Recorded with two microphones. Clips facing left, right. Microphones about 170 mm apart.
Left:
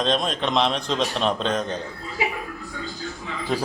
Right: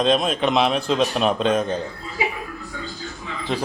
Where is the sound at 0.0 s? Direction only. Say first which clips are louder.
Right 4 dB; 5° right (ahead or behind).